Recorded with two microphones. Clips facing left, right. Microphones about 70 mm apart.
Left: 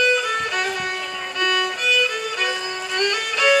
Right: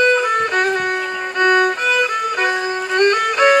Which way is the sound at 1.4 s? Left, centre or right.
Right.